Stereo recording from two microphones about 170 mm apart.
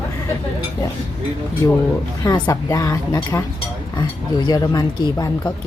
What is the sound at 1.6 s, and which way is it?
Speech, 25° left (ahead or behind).